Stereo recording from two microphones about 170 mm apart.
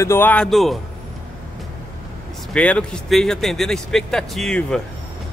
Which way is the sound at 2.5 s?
5° left (ahead or behind).